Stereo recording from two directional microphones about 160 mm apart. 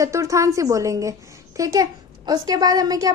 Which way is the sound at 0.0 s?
20° right (ahead or behind).